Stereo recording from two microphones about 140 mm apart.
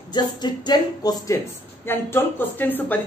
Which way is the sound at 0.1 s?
30° left (ahead or behind).